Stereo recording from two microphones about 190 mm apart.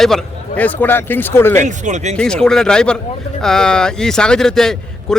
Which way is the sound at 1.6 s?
40° right (ahead or behind).